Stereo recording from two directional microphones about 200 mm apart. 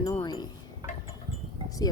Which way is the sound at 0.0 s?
15° left (ahead or behind).